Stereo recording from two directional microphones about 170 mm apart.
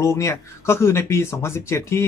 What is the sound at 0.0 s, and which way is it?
Speech, 15° left (ahead or behind).